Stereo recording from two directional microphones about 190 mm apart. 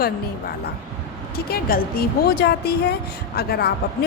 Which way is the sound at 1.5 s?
50° left (ahead or behind).